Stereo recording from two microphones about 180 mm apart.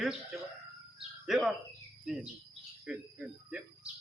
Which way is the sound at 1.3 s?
Centre (ahead or behind).